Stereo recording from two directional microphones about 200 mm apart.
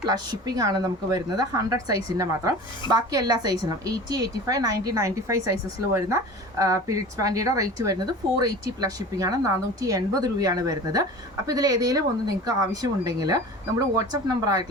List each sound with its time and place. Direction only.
0.0 s a woman's voice: 20° right (ahead or behind)